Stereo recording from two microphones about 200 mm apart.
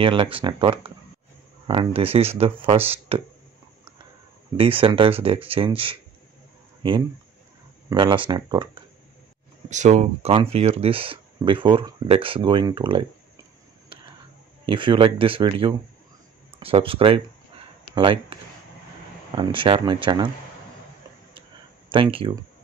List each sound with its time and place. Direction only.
0.0 s speech: 25° right (ahead or behind)
4.6 s speech: 25° right (ahead or behind)
9.7 s speech: 35° right (ahead or behind)
14.7 s speech: 25° right (ahead or behind)
21.8 s speech: 25° right (ahead or behind)